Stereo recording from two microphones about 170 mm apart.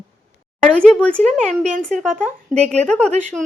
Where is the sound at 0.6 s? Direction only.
5° left (ahead or behind).